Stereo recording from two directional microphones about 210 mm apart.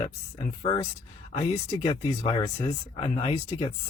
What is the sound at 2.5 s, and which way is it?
Speech, 30° left (ahead or behind).